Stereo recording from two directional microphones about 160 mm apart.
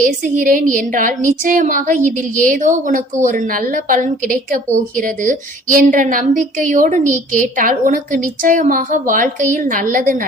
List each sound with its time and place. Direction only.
0.0 s a woman's voice: 60° right (ahead or behind)